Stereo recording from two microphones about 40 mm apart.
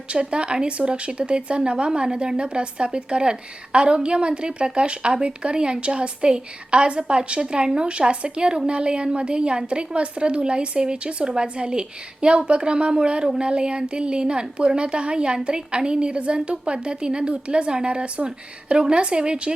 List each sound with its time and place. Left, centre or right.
0.1 s a woman's voice: right